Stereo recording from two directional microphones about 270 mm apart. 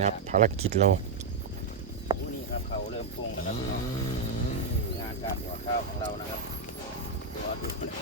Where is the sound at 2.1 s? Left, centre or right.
Centre.